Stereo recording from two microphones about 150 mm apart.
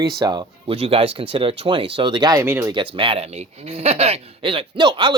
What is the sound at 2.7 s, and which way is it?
Speech, 35° right (ahead or behind).